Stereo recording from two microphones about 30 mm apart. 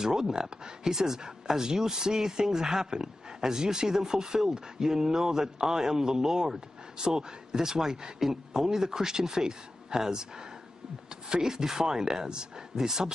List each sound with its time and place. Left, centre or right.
0.0 s speech: right